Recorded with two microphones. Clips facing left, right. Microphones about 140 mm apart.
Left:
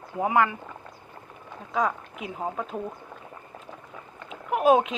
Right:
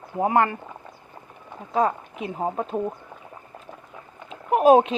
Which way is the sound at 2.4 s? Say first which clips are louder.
Right 5 dB; 30° right (ahead or behind).